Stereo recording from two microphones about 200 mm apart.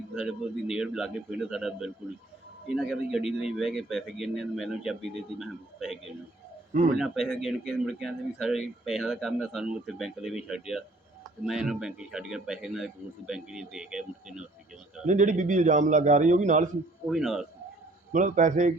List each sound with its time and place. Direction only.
0.1 s speech: 5° right (ahead or behind)
15.0 s a man's voice: 40° right (ahead or behind)
17.1 s speech: centre (ahead or behind)
18.1 s a man's voice: 40° right (ahead or behind)